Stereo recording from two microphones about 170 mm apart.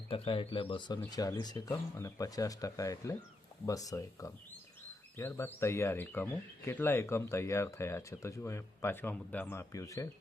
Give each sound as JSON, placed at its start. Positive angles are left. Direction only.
{"t": 0.1, "sound": "speech", "side_deg": 30}